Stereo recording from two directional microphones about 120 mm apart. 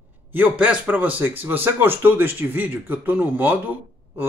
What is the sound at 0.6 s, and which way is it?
Speech, 10° right (ahead or behind).